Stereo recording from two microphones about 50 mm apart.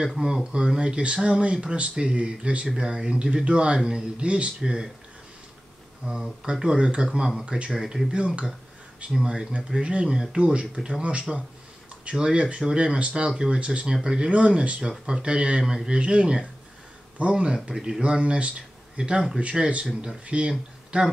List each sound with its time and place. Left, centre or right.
0.2 s speech: centre
6.0 s speech: centre
7.8 s speech: centre
8.1 s speech: right
17.7 s speech: centre
18.0 s speech: right